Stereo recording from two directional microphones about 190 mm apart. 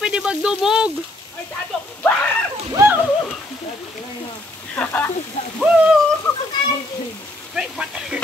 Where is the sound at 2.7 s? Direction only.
15° right (ahead or behind).